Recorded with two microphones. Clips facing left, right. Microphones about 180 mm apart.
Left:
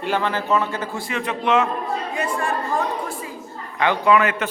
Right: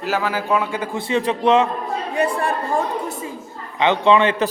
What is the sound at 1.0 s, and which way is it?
A man's voice, 30° right (ahead or behind).